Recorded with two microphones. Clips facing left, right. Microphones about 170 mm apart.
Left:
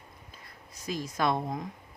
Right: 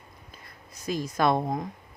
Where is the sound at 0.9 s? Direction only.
55° right (ahead or behind).